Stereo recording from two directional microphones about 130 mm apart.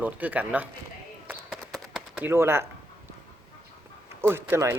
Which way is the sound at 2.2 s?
20° right (ahead or behind).